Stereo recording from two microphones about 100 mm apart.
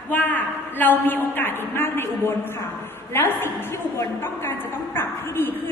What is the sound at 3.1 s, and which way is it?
A woman's voice, 20° left (ahead or behind).